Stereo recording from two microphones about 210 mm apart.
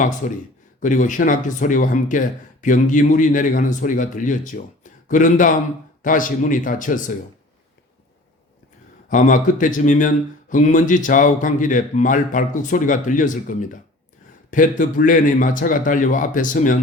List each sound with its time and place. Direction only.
0.8 s speech: 40° left (ahead or behind)
9.0 s speech: 40° left (ahead or behind)